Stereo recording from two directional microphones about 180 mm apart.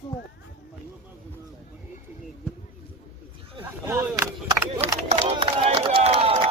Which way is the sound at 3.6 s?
10° right (ahead or behind).